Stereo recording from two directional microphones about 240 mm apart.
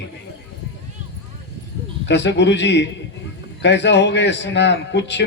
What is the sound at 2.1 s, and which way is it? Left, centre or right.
Speech, left.